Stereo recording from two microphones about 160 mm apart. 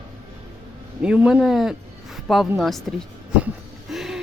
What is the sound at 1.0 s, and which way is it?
A woman's voice, 5° right (ahead or behind).